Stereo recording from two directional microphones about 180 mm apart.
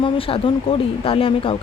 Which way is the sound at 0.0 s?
30° left (ahead or behind).